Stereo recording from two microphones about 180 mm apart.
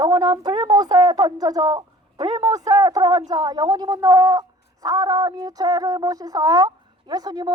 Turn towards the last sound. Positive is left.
turn(degrees=-20)  # may be behind; listen again after turning